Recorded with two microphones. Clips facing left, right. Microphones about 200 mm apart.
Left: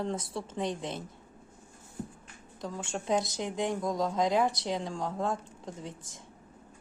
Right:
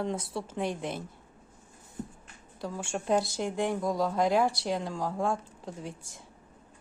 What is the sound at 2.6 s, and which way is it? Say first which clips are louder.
A woman's voice: right 2 dB; 5° right (ahead or behind).